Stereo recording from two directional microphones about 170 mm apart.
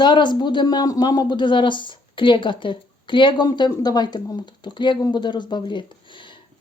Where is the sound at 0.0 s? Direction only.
25° left (ahead or behind).